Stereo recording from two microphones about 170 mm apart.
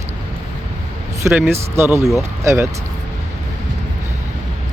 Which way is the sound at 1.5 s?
15° right (ahead or behind).